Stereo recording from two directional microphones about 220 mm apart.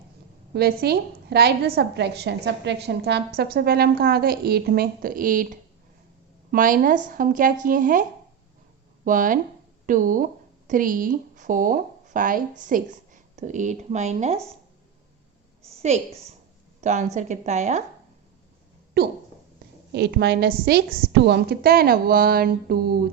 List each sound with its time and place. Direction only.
0.5 s a woman's voice: 45° right (ahead or behind)
9.0 s speech: 35° right (ahead or behind)
15.7 s a sound: 30° right (ahead or behind)
16.8 s speech: 35° right (ahead or behind)
19.0 s a woman's voice: 45° right (ahead or behind)